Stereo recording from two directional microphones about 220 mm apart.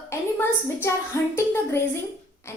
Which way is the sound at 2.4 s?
10° left (ahead or behind).